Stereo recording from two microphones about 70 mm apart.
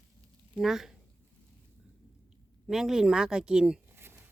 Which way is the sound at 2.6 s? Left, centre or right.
Centre.